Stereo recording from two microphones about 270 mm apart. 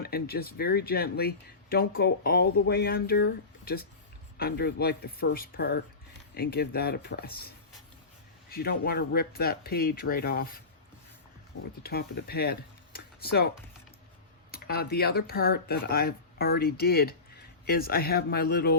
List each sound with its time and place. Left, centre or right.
0.0 s speech: left
11.8 s speech: left
14.5 s speech: left